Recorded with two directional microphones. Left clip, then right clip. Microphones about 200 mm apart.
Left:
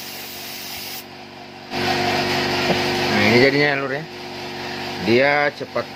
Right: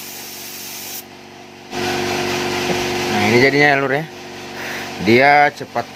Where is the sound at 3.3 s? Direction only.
45° right (ahead or behind).